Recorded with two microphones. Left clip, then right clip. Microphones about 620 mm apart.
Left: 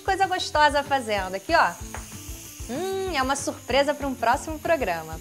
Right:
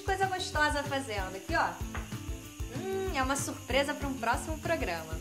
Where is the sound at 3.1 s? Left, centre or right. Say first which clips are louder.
Left 7 dB; left.